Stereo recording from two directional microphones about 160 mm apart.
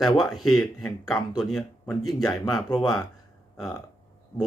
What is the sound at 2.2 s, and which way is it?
Speech, 20° left (ahead or behind).